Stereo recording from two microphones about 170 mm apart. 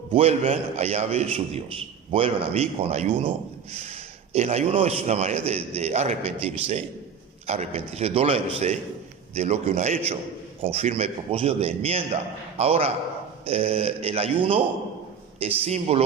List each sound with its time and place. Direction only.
0.1 s a man's voice: 35° right (ahead or behind)